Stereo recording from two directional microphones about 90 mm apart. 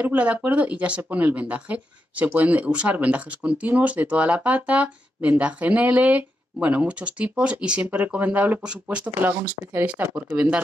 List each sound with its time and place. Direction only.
0.0 s speech: 20° right (ahead or behind)
9.4 s speech: 30° right (ahead or behind)
9.8 s speech: 15° right (ahead or behind)